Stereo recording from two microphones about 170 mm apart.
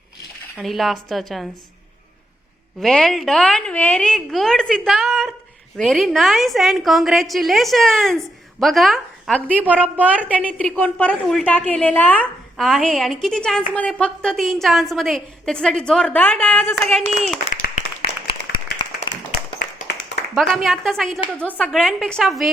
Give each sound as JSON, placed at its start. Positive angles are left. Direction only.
{"t": 0.5, "sound": "a woman's voice", "side_deg": 0}
{"t": 2.8, "sound": "a woman's voice", "side_deg": 5}
{"t": 9.8, "sound": "a woman's voice", "side_deg": -10}
{"t": 10.3, "sound": "a woman's voice", "side_deg": 10}
{"t": 17.5, "sound": "clapping", "side_deg": 50}
{"t": 18.5, "sound": "clapping", "side_deg": 70}
{"t": 20.3, "sound": "a woman's voice", "side_deg": 0}